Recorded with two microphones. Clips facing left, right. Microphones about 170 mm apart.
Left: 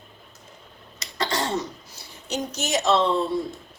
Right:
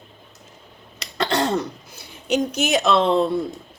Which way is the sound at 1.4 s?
55° right (ahead or behind).